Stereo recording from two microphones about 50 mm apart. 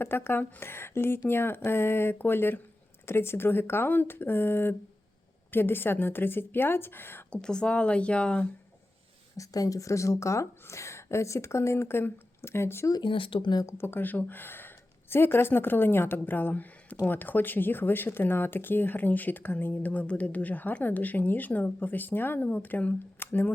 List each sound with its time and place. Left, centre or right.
0.0 s speech: left
7.3 s speech: centre
9.4 s speech: left
13.8 s speech: left
23.2 s speech: left